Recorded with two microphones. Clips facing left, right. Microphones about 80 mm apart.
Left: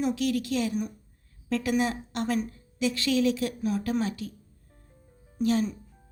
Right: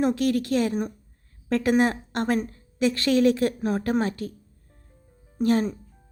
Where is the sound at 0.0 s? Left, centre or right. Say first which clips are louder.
Right 4 dB; right.